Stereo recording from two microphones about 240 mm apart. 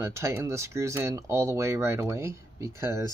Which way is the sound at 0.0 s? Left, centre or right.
Centre.